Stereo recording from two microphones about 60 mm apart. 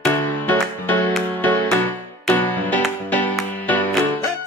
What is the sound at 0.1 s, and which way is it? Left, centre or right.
Music, left.